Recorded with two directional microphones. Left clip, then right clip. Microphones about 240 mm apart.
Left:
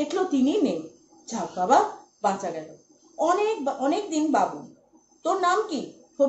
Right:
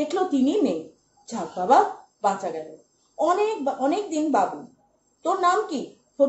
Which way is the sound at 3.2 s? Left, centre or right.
Centre.